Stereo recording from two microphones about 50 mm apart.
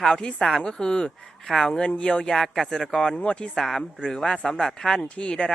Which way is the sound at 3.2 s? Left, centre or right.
Left.